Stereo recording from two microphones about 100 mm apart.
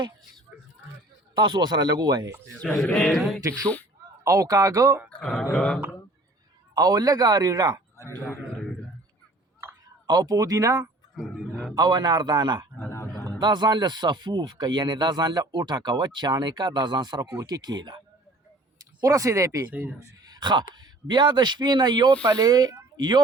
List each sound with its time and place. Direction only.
1.4 s speech: 45° right (ahead or behind)
2.8 s speech: 5° left (ahead or behind)
4.2 s a man's voice: 35° right (ahead or behind)
5.2 s a sound: 5° left (ahead or behind)
6.7 s a man's voice: 40° right (ahead or behind)
10.1 s a man's voice: 40° right (ahead or behind)
11.1 s a sound: 5° left (ahead or behind)
11.7 s speech: 40° right (ahead or behind)
12.9 s a sound: 30° left (ahead or behind)
13.4 s speech: 45° right (ahead or behind)
19.0 s a man's voice: 30° right (ahead or behind)
19.6 s speech: 15° right (ahead or behind)
20.0 s a man's voice: 45° right (ahead or behind)